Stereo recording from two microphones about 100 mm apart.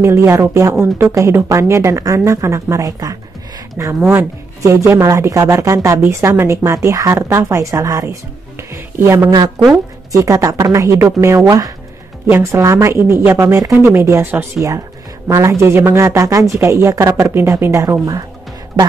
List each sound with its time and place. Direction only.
0.0 s speech: 30° right (ahead or behind)
3.8 s speech: 25° right (ahead or behind)